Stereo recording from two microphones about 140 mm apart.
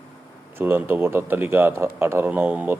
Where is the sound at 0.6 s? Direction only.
15° right (ahead or behind).